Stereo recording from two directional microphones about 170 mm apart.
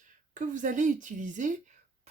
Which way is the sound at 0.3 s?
50° right (ahead or behind).